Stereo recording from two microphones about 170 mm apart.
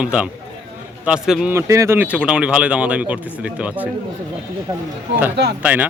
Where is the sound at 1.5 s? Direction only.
15° right (ahead or behind).